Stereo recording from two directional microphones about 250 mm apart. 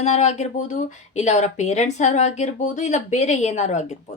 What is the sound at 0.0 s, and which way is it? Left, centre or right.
A woman's voice, left.